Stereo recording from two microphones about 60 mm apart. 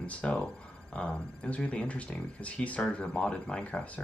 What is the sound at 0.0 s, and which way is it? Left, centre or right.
Speech, left.